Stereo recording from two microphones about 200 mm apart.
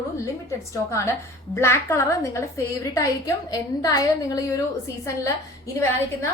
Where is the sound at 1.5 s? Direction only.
15° left (ahead or behind).